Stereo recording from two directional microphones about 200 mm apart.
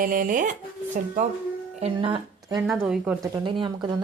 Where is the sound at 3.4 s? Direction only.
25° right (ahead or behind).